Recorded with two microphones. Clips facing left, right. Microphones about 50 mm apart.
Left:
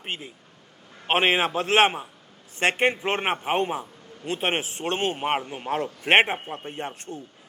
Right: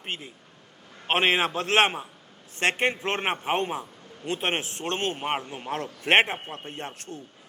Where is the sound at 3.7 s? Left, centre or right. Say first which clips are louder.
Left 2 dB; centre.